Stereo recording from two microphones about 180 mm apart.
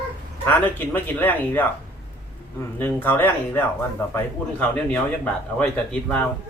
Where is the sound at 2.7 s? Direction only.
10° left (ahead or behind).